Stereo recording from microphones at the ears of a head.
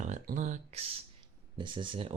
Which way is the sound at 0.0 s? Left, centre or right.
Right.